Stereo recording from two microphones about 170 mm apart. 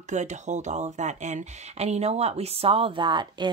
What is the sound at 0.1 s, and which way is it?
Speech, 45° right (ahead or behind).